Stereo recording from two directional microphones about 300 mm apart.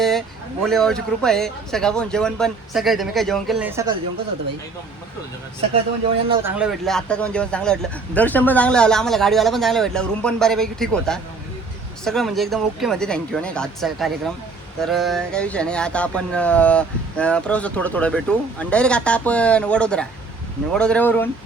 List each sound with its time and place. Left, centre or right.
0.0 s speech: centre
6.2 s speech: centre
6.6 s speech: centre